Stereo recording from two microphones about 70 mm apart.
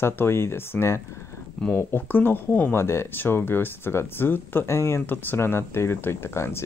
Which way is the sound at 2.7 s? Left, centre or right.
Left.